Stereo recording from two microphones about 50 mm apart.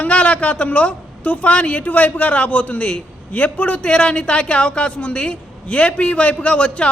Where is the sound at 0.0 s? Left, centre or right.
Left.